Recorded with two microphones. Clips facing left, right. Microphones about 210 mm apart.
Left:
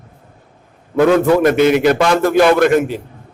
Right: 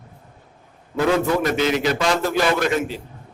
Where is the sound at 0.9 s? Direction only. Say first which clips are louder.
Left 8 dB; 60° left (ahead or behind).